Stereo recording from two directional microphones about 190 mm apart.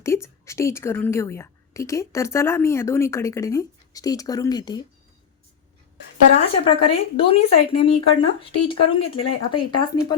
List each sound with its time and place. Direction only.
0.0 s a woman's voice: 15° left (ahead or behind)
6.7 s speech: 30° left (ahead or behind)